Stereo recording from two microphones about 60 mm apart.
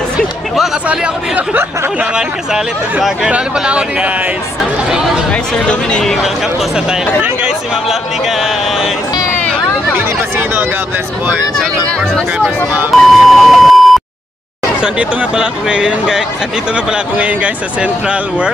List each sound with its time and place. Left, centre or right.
2.1 s speech: centre
5.7 s speech: centre
13.0 s beep: centre
14.8 s speech: centre